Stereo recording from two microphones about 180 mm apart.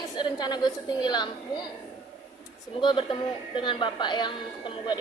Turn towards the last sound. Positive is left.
turn(degrees=25)  # may be behind; listen again after turning